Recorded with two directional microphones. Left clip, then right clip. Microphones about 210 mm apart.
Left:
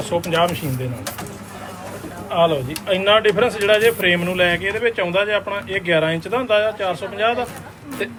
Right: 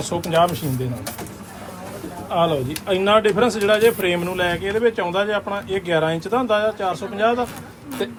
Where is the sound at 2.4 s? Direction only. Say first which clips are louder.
Left 3 dB; 25° right (ahead or behind).